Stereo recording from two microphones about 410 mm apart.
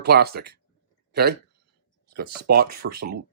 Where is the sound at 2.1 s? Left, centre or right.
Right.